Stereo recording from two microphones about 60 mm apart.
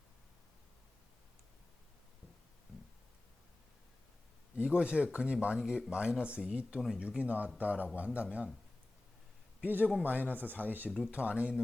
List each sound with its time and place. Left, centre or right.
4.5 s a man's voice: centre
6.7 s speech: centre
7.2 s speech: right
9.6 s speech: right